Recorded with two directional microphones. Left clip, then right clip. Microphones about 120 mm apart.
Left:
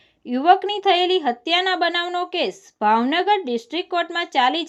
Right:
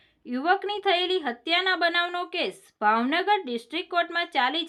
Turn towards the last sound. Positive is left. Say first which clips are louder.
# left 6 dB
turn(degrees=30)  # may be behind; listen again after turning